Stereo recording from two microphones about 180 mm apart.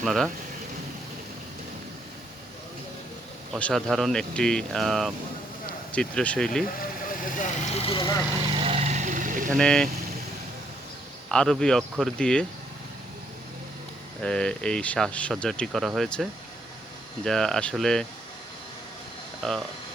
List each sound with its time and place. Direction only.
0.0 s speech: centre (ahead or behind)
3.5 s speech: centre (ahead or behind)
7.3 s speech: 45° left (ahead or behind); by 8.2 s 25° left (ahead or behind)
8.5 s vehicle: 35° right (ahead or behind)
9.5 s speech: 5° left (ahead or behind)
11.3 s speech: 5° left (ahead or behind)
14.2 s speech: 5° left (ahead or behind)
17.2 s speech: centre (ahead or behind)
19.4 s speech: centre (ahead or behind)